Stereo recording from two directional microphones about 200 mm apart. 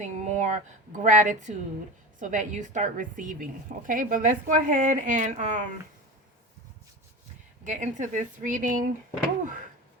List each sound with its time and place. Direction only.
0.0 s a woman's voice: 35° right (ahead or behind)
7.6 s a woman's voice: 40° right (ahead or behind)